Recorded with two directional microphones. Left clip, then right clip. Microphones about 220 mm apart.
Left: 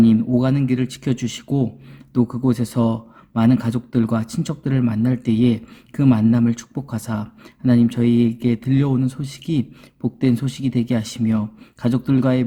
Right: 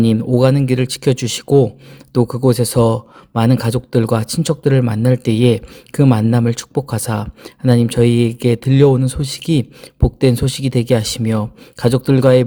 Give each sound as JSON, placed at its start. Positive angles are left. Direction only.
{"t": 0.0, "sound": "a man's voice", "side_deg": -30}